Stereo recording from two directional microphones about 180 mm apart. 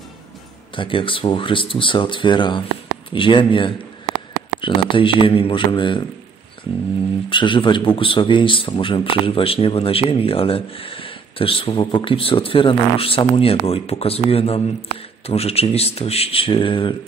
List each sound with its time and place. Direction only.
0.7 s speech: 30° left (ahead or behind)
7.2 s speech: 25° left (ahead or behind)